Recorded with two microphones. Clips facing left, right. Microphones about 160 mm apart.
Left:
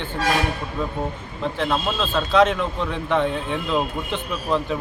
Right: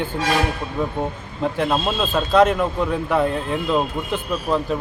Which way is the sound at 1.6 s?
25° right (ahead or behind).